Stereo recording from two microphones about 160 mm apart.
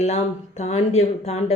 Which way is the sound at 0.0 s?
45° left (ahead or behind).